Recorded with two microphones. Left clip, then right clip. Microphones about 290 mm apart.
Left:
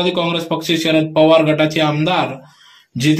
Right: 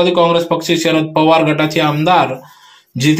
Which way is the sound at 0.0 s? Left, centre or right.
Centre.